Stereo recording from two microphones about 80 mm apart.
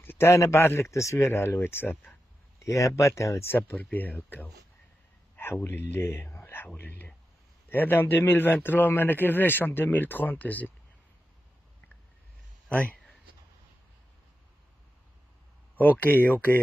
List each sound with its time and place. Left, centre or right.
0.0 s speech: left
2.6 s a man's voice: left
12.6 s speech: centre
15.8 s a man's voice: left